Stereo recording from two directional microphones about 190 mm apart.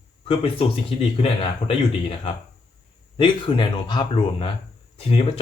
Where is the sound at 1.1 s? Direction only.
30° left (ahead or behind).